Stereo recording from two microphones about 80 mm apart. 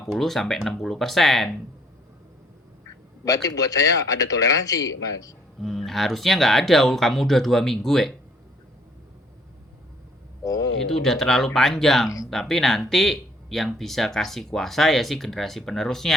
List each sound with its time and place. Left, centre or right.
0.1 s speech: centre
3.2 s speech: left
5.6 s speech: centre
10.4 s a sound: left
10.9 s speech: centre